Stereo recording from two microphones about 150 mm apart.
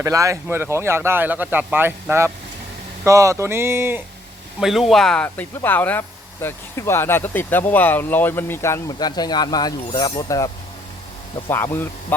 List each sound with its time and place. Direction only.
0.0 s speech: 20° right (ahead or behind)
4.6 s speech: centre (ahead or behind); by 11.9 s 15° left (ahead or behind)